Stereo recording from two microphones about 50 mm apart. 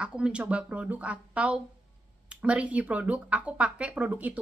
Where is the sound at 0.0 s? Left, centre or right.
Right.